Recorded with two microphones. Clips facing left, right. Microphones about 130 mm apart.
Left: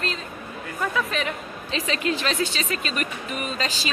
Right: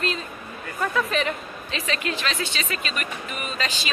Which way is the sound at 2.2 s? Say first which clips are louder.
Left 3 dB; 40° left (ahead or behind).